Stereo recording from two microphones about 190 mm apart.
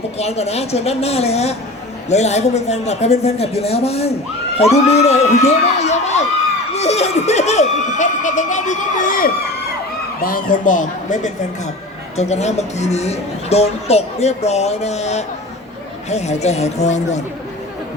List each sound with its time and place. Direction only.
0.2 s a man's voice: 35° left (ahead or behind)